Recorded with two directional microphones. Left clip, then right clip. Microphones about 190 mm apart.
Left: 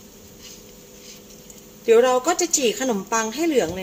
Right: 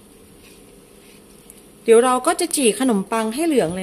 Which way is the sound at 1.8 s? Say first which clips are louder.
Right 2 dB; 40° right (ahead or behind).